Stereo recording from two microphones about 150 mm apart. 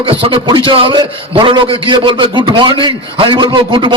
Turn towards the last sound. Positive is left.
turn(degrees=-30)  # may be behind; listen again after turning